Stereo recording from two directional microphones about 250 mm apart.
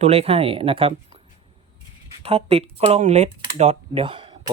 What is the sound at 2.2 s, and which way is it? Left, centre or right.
Speech, right.